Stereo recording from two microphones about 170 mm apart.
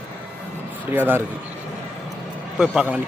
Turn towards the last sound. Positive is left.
turn(degrees=-5)  # may be behind; listen again after turning